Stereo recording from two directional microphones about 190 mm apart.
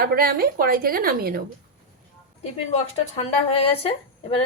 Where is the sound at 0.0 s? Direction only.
50° right (ahead or behind).